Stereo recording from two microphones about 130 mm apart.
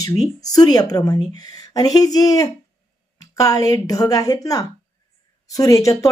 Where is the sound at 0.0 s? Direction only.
30° left (ahead or behind).